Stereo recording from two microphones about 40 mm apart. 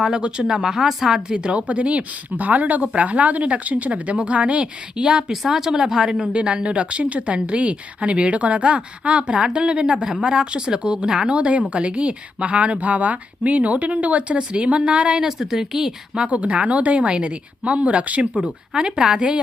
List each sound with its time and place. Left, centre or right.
0.0 s speech: centre
5.3 s speech: centre
6.3 s speech: right
11.3 s speech: right
15.2 s speech: centre
16.3 s speech: right
18.7 s speech: centre